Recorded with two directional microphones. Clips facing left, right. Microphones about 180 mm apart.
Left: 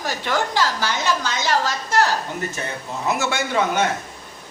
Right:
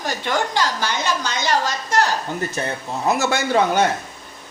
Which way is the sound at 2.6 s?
35° right (ahead or behind).